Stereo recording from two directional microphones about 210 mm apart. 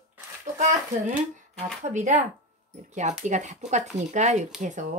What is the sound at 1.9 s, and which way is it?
Speech, 35° right (ahead or behind).